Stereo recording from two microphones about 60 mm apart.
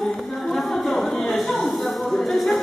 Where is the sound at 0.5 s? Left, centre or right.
Centre.